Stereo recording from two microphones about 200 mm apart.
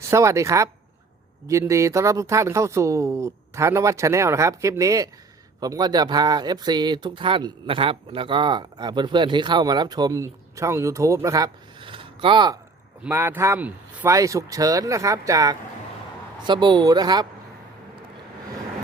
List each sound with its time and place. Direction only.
0.1 s speech: 15° right (ahead or behind)
13.1 s speech: 10° right (ahead or behind)